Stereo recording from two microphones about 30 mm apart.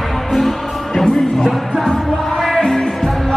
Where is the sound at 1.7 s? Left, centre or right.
Centre.